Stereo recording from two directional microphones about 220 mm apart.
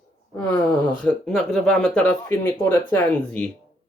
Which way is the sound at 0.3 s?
5° left (ahead or behind).